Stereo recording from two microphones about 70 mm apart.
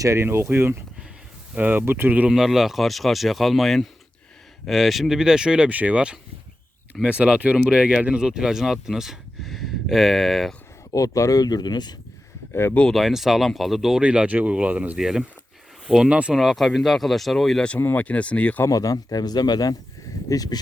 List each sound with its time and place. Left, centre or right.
0.0 s speech: right
2.3 s speech: centre
10.9 s speech: left
12.9 s speech: centre
14.0 s speech: centre
14.9 s speech: centre
17.7 s speech: left
18.0 s speech: centre
18.7 s speech: left
20.3 s speech: left